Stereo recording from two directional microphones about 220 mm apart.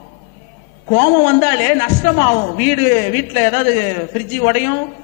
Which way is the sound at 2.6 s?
15° left (ahead or behind).